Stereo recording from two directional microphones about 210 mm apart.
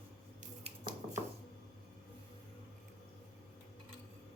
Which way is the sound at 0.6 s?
30° right (ahead or behind).